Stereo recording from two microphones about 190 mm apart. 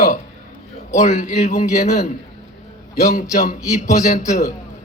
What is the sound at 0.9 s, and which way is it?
A man's voice, 40° left (ahead or behind).